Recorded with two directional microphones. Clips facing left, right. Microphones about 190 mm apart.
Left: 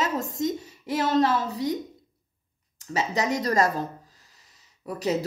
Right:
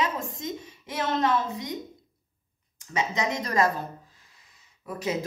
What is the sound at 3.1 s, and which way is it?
Speech, 40° left (ahead or behind).